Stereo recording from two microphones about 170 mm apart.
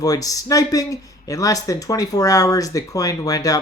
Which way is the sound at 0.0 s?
20° left (ahead or behind).